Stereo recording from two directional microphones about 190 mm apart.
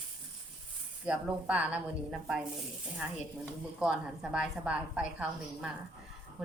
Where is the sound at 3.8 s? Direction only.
5° right (ahead or behind).